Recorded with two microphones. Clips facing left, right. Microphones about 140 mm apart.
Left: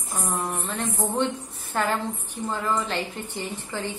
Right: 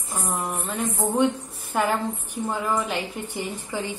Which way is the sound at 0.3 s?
10° right (ahead or behind).